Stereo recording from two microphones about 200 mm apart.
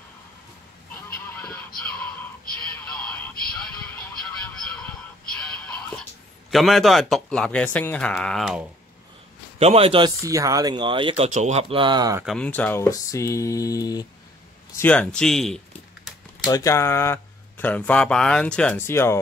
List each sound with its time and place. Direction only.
0.9 s goose: 10° left (ahead or behind)
2.8 s music: 5° left (ahead or behind)
6.5 s speech: centre (ahead or behind)
9.6 s speech: 30° right (ahead or behind)
12.3 s speech: 5° left (ahead or behind)
14.8 s speech: 5° left (ahead or behind)
16.4 s speech: 15° left (ahead or behind)